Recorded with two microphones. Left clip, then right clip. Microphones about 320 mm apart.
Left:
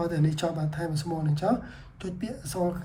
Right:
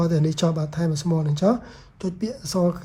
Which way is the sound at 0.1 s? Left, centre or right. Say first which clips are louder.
Right 5 dB; centre.